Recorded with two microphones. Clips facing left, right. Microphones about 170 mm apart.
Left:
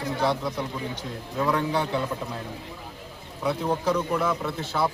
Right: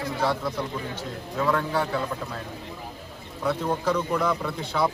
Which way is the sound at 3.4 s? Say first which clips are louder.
Even; 10° left (ahead or behind).